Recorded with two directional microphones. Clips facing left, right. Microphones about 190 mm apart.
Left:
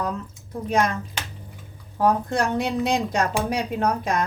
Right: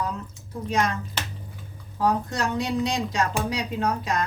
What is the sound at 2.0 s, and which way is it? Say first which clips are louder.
A woman's voice: left 3 dB; 55° left (ahead or behind).